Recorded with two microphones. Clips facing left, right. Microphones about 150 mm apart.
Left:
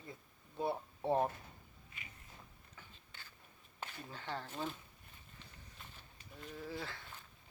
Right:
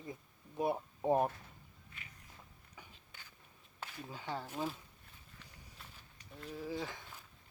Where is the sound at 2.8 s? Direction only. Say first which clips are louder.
Right 2 dB; 15° right (ahead or behind).